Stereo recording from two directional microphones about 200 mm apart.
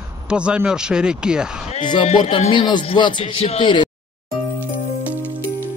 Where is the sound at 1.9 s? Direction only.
25° left (ahead or behind).